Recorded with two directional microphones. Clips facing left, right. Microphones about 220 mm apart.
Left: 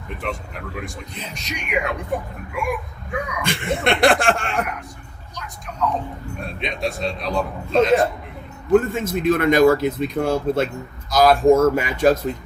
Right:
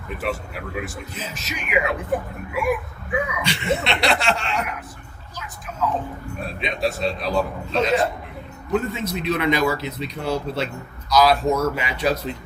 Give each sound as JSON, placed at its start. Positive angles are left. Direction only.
{"t": 0.2, "sound": "speech", "side_deg": -5}
{"t": 3.4, "sound": "speech", "side_deg": 50}
{"t": 5.3, "sound": "a sound", "side_deg": -5}
{"t": 6.4, "sound": "speech", "side_deg": 0}
{"t": 8.7, "sound": "speech", "side_deg": 50}